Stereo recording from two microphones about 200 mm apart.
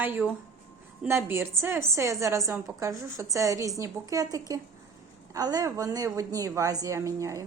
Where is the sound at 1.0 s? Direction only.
10° right (ahead or behind).